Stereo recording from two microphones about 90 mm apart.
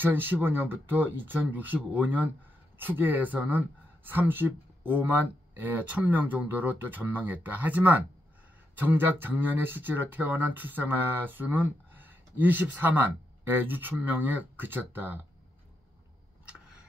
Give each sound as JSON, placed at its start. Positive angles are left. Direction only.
{"t": 0.0, "sound": "speech", "side_deg": -20}